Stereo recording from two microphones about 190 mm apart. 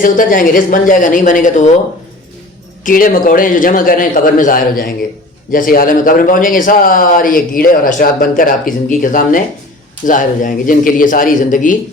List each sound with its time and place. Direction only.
0.0 s speech: 45° left (ahead or behind)
2.8 s speech: 45° left (ahead or behind)